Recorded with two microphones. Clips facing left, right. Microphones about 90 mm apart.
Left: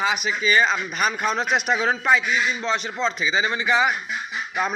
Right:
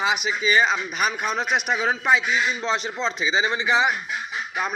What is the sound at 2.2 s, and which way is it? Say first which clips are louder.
A man's voice: even; 25° right (ahead or behind).